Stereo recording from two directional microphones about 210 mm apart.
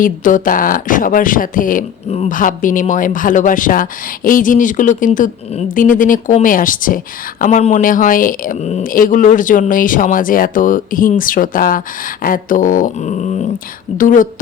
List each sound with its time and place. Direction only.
0.0 s speech: 40° left (ahead or behind)